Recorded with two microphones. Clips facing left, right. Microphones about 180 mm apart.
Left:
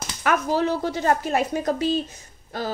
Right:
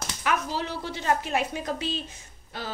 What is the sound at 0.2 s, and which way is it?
A woman's voice, 50° left (ahead or behind).